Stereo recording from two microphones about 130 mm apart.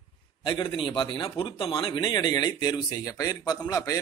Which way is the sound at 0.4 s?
40° left (ahead or behind).